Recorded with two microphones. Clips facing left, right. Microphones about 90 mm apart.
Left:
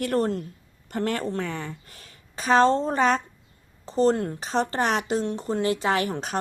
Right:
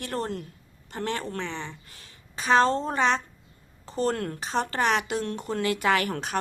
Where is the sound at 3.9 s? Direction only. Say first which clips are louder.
Left 6 dB; 30° left (ahead or behind).